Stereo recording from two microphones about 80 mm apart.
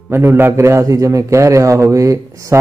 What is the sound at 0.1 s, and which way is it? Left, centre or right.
A man's voice, right.